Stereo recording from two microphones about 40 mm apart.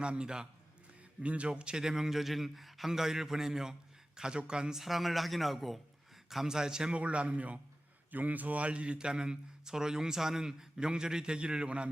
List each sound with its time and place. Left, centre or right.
0.0 s a man's voice: right
1.8 s a man's voice: centre
4.8 s a man's voice: centre
6.9 s a man's voice: right
8.1 s a man's voice: right